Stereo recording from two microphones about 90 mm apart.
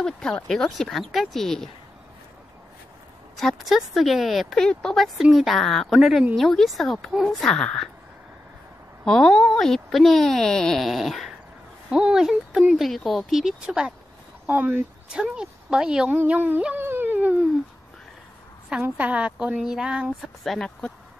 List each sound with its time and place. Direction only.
0.0 s speech: 10° left (ahead or behind)
3.3 s speech: centre (ahead or behind)
9.0 s speech: 5° left (ahead or behind)
14.4 s speech: 20° right (ahead or behind)
15.1 s speech: 10° right (ahead or behind)
16.2 s a sound: 20° right (ahead or behind)
18.7 s speech: 15° right (ahead or behind)
20.4 s speech: 5° left (ahead or behind)